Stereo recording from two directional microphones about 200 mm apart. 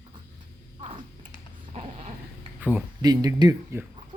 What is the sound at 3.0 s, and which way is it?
Speech, 20° right (ahead or behind).